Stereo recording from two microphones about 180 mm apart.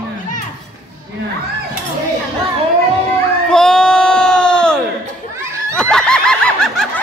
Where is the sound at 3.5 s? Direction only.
5° left (ahead or behind).